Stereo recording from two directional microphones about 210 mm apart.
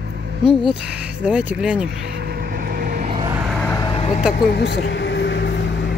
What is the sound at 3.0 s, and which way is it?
Vehicle, 20° right (ahead or behind).